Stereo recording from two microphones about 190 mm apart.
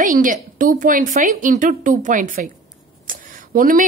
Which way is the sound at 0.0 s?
45° right (ahead or behind).